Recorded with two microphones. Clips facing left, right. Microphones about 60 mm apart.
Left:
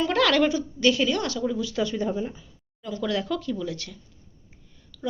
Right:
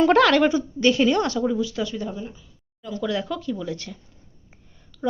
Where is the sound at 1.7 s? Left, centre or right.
Centre.